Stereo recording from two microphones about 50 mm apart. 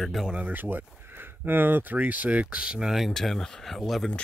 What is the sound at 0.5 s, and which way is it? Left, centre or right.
Speech, right.